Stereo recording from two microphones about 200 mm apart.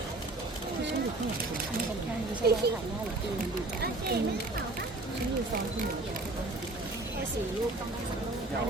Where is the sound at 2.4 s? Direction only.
55° right (ahead or behind).